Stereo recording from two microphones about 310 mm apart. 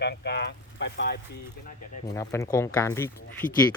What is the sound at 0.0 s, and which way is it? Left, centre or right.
Speech, left.